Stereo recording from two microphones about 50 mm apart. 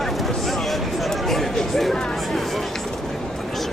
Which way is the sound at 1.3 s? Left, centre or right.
Centre.